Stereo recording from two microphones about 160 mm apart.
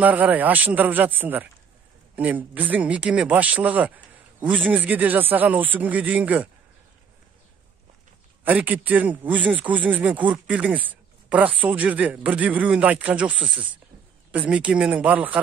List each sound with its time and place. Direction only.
0.0 s speech: 10° right (ahead or behind)
8.5 s speech: 10° right (ahead or behind)
13.3 s speech: 30° right (ahead or behind)
14.5 s speech: 5° right (ahead or behind)